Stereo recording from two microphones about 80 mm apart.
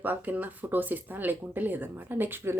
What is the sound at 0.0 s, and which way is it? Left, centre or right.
A woman's voice, right.